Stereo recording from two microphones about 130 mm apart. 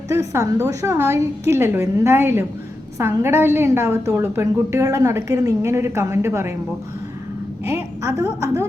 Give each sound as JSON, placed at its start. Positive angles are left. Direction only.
{"t": 0.1, "sound": "a woman's voice", "side_deg": -25}
{"t": 7.6, "sound": "a woman's voice", "side_deg": -20}